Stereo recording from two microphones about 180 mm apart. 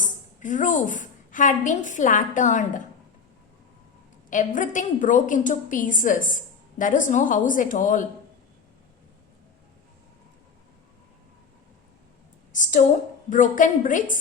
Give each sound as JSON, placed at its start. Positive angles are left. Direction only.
{"t": 0.0, "sound": "a woman's voice", "side_deg": 45}
{"t": 4.3, "sound": "a woman's voice", "side_deg": 45}
{"t": 13.3, "sound": "a woman's voice", "side_deg": 45}